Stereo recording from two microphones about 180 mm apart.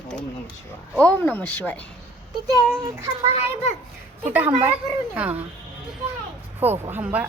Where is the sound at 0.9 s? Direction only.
5° left (ahead or behind).